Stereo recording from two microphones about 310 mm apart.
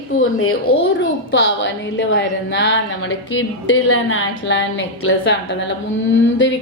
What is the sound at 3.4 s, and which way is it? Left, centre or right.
A woman's voice, left.